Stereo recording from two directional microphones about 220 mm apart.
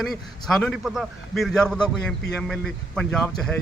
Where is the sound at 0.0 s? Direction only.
Centre (ahead or behind).